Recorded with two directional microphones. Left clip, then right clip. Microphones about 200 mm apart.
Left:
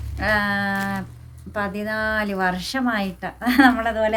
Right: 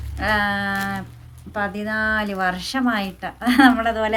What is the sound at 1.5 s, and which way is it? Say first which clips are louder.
A woman's voice: right 1 dB; 5° left (ahead or behind).